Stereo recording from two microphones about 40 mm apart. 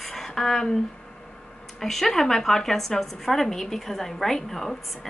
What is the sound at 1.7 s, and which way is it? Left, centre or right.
Speech, centre.